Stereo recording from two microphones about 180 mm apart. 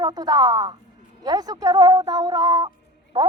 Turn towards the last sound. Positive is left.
turn(degrees=-25)  # may be behind; listen again after turning